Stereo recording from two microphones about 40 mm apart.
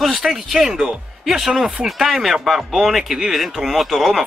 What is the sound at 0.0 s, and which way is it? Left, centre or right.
Speech, centre.